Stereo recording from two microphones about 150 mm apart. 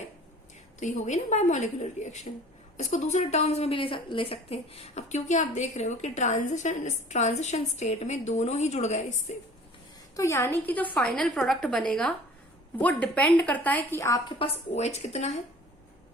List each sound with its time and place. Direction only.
0.8 s a woman's voice: 55° left (ahead or behind)
10.2 s a woman's voice: 20° left (ahead or behind)
14.3 s a woman's voice: 40° left (ahead or behind)